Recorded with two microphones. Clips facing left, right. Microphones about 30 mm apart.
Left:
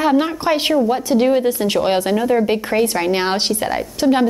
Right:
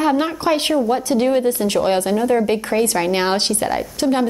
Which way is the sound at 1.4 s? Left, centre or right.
Left.